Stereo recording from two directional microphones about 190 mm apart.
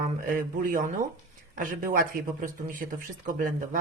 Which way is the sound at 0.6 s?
45° right (ahead or behind).